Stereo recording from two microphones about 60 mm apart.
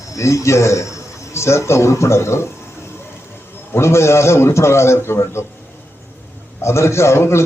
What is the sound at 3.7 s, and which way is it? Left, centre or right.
A man's voice, left.